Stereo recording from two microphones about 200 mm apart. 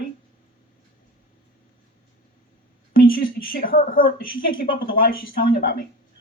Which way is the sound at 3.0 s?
45° left (ahead or behind).